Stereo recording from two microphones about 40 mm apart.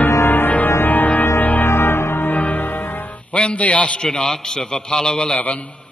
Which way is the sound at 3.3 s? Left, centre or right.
Left.